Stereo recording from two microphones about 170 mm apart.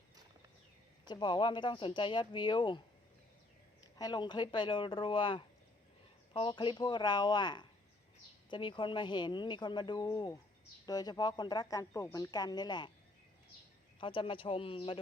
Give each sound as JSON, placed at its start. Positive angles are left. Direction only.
{"t": 1.0, "sound": "a woman's voice", "side_deg": 25}
{"t": 3.9, "sound": "a woman's voice", "side_deg": 25}
{"t": 14.0, "sound": "a man's voice", "side_deg": 30}